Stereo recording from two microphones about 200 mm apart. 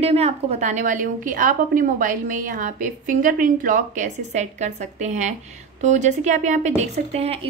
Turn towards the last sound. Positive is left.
turn(degrees=-30)  # may be behind; listen again after turning